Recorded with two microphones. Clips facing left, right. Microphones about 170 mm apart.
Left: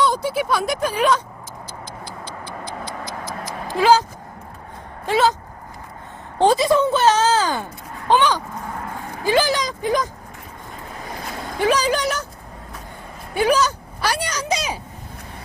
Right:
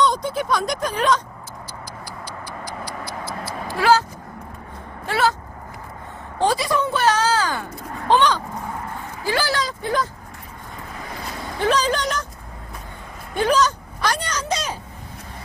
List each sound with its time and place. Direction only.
0.0 s speech: 5° left (ahead or behind)
2.6 s vehicle: 25° left (ahead or behind)
5.0 s speech: 20° left (ahead or behind)
6.3 s speech: 25° left (ahead or behind)
8.1 s speech: 5° left (ahead or behind)
9.2 s speech: 20° left (ahead or behind)
11.6 s speech: 10° left (ahead or behind)
13.3 s speech: 10° left (ahead or behind)